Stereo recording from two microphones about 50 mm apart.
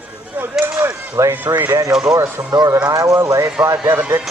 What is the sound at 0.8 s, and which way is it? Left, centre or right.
Cutlery, right.